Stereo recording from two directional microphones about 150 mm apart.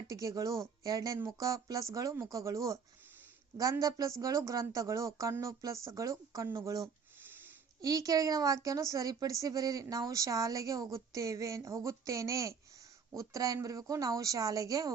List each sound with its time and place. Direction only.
0.1 s a woman's voice: 20° right (ahead or behind)
7.3 s a sound: 15° right (ahead or behind)
7.9 s a woman's voice: 25° right (ahead or behind)